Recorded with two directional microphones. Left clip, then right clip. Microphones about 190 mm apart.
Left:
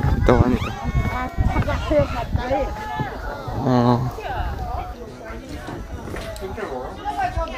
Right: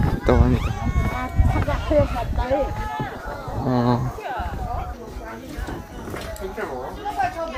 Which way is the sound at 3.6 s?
25° left (ahead or behind).